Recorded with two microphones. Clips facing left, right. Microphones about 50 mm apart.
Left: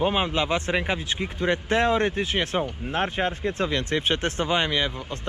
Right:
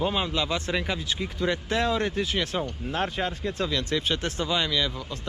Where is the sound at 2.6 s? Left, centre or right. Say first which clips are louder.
Left 2 dB; left.